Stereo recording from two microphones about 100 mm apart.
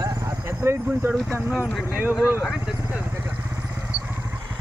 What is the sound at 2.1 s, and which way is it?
Speech, 10° right (ahead or behind).